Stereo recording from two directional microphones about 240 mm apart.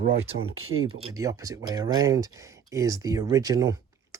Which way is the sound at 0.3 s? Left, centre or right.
Right.